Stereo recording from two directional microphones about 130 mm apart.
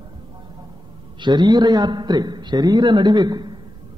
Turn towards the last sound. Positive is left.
turn(degrees=-35)  # may be behind; listen again after turning